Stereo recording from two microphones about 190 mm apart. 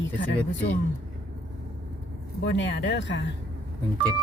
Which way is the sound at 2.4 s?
70° left (ahead or behind).